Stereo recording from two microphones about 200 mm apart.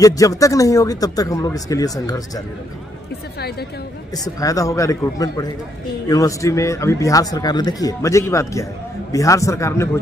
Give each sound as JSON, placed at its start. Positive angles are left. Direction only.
{"t": 0.0, "sound": "speech", "side_deg": 15}
{"t": 3.3, "sound": "speech", "side_deg": 50}
{"t": 4.1, "sound": "speech", "side_deg": 20}